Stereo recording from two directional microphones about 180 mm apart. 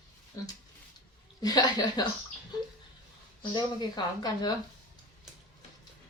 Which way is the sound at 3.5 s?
25° left (ahead or behind).